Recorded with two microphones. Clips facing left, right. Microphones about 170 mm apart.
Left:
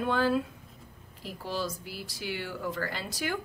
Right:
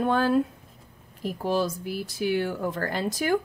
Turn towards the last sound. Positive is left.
turn(degrees=-45)  # may be behind; listen again after turning